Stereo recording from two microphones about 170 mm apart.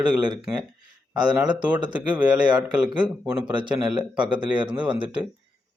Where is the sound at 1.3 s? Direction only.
25° right (ahead or behind).